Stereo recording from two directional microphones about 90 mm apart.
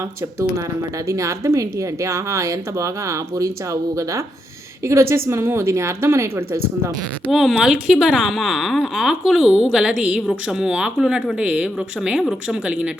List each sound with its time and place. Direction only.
1.0 s speech: 35° right (ahead or behind)
7.3 s a woman's voice: centre (ahead or behind)